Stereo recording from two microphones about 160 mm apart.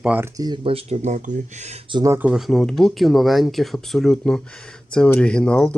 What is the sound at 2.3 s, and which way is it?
Speech, centre (ahead or behind).